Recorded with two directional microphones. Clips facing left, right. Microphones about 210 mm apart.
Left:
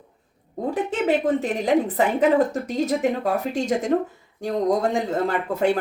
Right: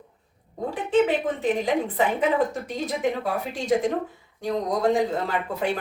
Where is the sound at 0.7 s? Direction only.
40° left (ahead or behind).